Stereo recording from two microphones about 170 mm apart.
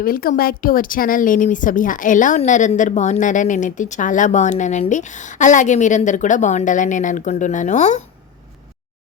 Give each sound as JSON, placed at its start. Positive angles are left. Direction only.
{"t": 0.0, "sound": "speech", "side_deg": 60}